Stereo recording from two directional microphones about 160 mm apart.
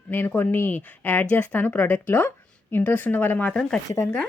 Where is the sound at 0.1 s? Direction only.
10° left (ahead or behind).